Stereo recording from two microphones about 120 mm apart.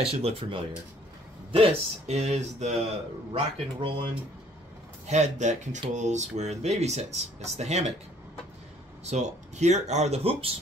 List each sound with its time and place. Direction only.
0.0 s speech: 55° right (ahead or behind)
2.1 s speech: 70° right (ahead or behind)
3.3 s speech: 45° right (ahead or behind)
5.0 s speech: 70° right (ahead or behind)
9.0 s speech: 75° right (ahead or behind); by 10.5 s 55° right (ahead or behind)